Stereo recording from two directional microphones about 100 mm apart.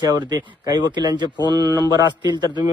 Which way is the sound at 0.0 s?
40° right (ahead or behind).